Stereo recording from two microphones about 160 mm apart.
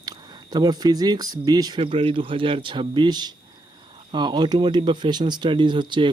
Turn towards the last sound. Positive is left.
turn(degrees=-30)  # may be behind; listen again after turning